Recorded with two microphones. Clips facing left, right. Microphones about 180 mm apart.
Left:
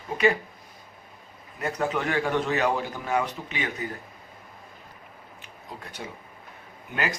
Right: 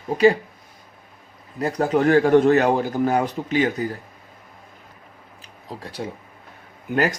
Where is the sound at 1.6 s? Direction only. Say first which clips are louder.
Right 8 dB; 35° right (ahead or behind).